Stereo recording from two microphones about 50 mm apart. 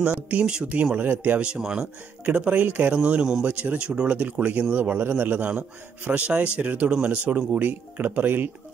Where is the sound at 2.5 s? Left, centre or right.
Right.